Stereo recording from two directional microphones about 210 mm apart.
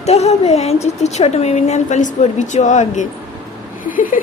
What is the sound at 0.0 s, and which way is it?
A woman's voice, 30° left (ahead or behind).